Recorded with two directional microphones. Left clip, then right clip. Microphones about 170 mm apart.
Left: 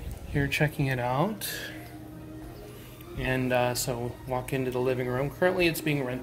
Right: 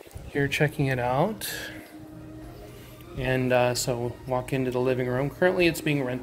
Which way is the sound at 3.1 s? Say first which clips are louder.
Right 3 dB; 55° right (ahead or behind).